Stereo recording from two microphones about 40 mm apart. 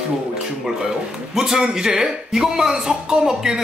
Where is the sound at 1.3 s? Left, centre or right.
Centre.